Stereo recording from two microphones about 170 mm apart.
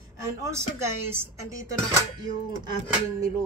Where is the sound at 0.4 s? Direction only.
15° right (ahead or behind).